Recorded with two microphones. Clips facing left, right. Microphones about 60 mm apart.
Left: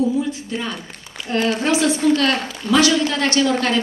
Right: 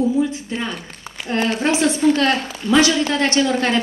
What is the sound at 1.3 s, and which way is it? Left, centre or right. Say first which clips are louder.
A woman's voice: even; right.